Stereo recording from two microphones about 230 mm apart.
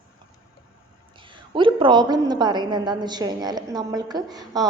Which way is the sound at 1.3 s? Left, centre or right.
Right.